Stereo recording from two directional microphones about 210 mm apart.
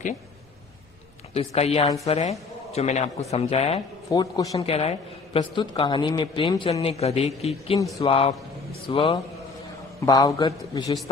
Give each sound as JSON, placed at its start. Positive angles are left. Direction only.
{"t": 1.3, "sound": "a man's voice", "side_deg": 30}
{"t": 4.1, "sound": "a man's voice", "side_deg": 20}
{"t": 4.6, "sound": "a man's voice", "side_deg": 30}